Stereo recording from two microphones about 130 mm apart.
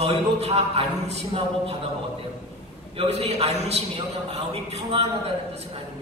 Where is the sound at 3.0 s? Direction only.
55° right (ahead or behind).